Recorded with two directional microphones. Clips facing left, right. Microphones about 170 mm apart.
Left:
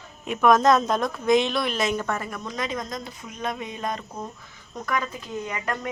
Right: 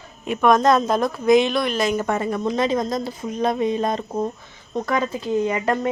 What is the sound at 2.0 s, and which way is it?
Speech, 25° right (ahead or behind).